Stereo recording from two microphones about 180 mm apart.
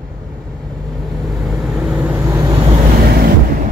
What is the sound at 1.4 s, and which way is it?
Vehicle, 5° right (ahead or behind).